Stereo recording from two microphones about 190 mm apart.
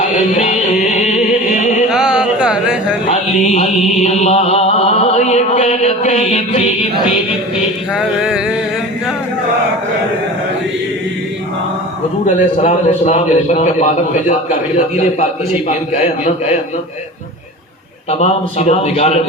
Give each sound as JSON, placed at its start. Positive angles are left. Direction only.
{"t": 0.0, "sound": "music", "side_deg": 35}
{"t": 1.9, "sound": "a sound", "side_deg": -5}
{"t": 3.1, "sound": "music", "side_deg": 35}
{"t": 7.9, "sound": "music", "side_deg": -5}
{"t": 12.2, "sound": "music", "side_deg": 40}
{"t": 18.1, "sound": "music", "side_deg": 35}